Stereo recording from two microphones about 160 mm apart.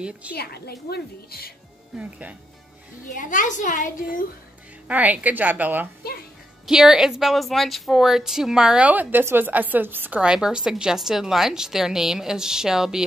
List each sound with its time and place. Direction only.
0.3 s a woman's voice: 80° left
2.0 s a woman's voice: 10° right (ahead or behind)
3.2 s a woman's voice: 50° left (ahead or behind)
4.8 s a woman's voice: 10° right (ahead or behind)